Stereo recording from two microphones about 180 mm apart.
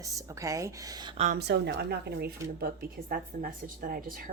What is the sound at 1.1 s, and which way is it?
Speech, 40° right (ahead or behind).